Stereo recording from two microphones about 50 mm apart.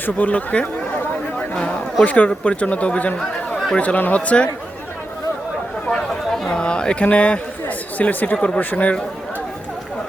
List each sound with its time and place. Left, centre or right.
0.0 s speech: left
1.4 s chatter: left
2.0 s speech: left
5.9 s chatter: centre
6.5 s speech: centre